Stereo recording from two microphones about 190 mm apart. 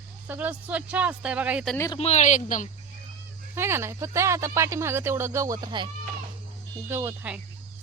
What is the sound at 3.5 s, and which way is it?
Speech, 15° right (ahead or behind).